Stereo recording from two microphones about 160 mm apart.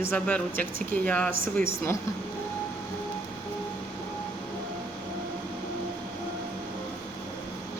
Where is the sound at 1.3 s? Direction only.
60° right (ahead or behind).